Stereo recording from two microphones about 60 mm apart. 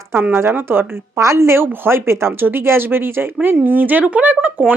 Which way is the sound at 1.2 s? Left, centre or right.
Right.